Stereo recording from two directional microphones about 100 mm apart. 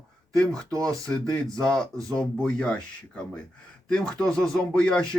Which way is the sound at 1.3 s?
5° left (ahead or behind).